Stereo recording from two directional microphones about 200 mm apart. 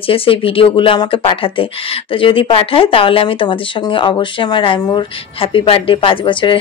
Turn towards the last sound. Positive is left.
turn(degrees=25)  # may be behind; listen again after turning